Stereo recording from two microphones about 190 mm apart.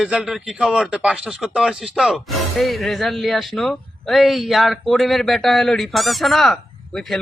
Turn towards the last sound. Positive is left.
turn(degrees=0)  # may be behind; listen again after turning